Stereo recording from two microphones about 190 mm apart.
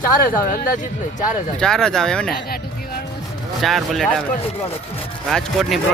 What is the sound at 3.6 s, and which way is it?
Speech, centre (ahead or behind).